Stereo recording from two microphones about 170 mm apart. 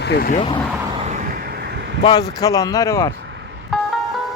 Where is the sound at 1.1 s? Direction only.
55° right (ahead or behind).